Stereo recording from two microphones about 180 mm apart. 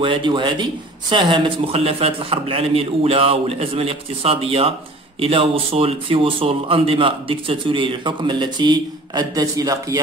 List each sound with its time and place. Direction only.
0.0 s a man's voice: 25° right (ahead or behind)